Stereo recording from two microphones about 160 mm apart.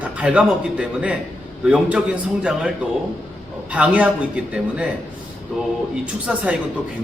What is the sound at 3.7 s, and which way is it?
Speech, 10° right (ahead or behind).